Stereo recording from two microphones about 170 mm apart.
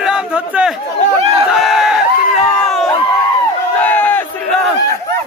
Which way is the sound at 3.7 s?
10° left (ahead or behind).